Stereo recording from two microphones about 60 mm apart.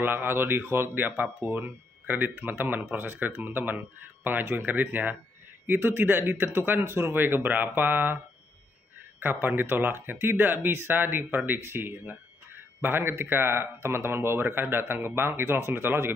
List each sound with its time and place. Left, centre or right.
0.0 s speech: right
9.2 s speech: right